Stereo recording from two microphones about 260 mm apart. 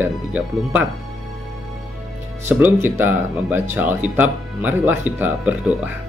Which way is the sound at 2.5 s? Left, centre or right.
Centre.